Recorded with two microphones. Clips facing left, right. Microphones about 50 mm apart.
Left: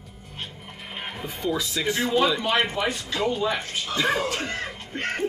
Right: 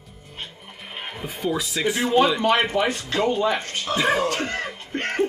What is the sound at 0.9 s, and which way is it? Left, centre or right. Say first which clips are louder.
Speech: right 1 dB; centre.